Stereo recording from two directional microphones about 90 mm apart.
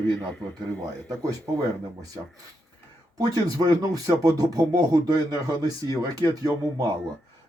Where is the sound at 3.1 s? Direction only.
45° right (ahead or behind).